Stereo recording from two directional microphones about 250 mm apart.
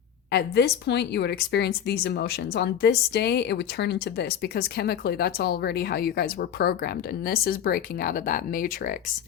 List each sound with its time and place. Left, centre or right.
0.3 s a woman's voice: left